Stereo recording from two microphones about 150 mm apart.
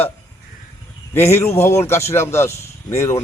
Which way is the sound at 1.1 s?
20° left (ahead or behind).